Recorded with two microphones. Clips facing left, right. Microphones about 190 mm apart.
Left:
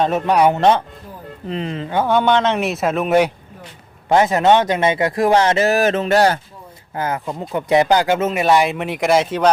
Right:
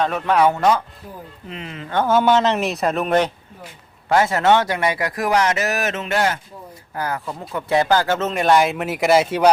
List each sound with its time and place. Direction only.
0.0 s speech: 20° left (ahead or behind)
2.0 s speech: 5° right (ahead or behind); by 6.4 s 35° left (ahead or behind)
6.9 s speech: 20° left (ahead or behind); by 9.5 s 5° right (ahead or behind)